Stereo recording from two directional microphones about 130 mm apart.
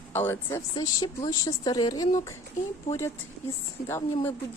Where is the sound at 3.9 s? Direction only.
20° left (ahead or behind).